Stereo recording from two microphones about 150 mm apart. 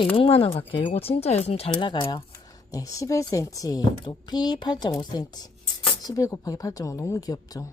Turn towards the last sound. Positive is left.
turn(degrees=25)  # may be behind; listen again after turning